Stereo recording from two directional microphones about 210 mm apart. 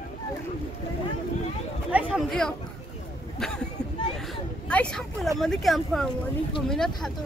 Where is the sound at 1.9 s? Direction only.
5° right (ahead or behind).